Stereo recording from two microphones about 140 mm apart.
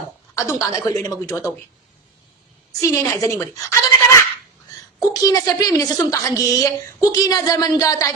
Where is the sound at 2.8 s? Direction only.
20° left (ahead or behind).